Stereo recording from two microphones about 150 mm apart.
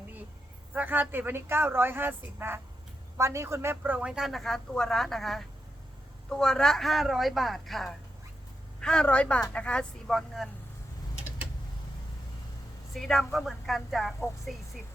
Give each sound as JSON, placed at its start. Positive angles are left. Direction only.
{"t": 0.7, "sound": "speech", "side_deg": -10}
{"t": 12.9, "sound": "speech", "side_deg": 0}